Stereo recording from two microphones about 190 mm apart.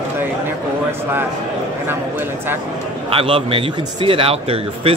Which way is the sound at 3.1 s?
30° right (ahead or behind).